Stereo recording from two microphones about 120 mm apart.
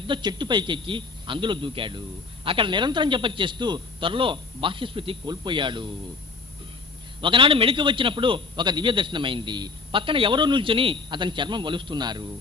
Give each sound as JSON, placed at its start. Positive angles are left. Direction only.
{"t": 0.1, "sound": "a man's voice", "side_deg": -40}
{"t": 7.2, "sound": "a man's voice", "side_deg": -45}